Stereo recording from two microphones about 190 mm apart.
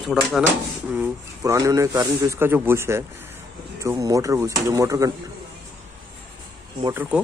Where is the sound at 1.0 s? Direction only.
15° right (ahead or behind).